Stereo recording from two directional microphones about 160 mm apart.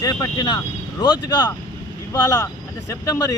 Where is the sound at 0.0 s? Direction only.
20° left (ahead or behind).